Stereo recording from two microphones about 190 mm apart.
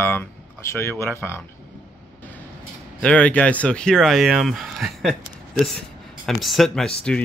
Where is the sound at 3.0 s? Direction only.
5° left (ahead or behind).